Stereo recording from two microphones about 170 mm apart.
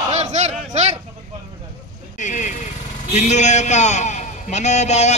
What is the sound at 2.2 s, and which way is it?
Vehicle, 45° left (ahead or behind).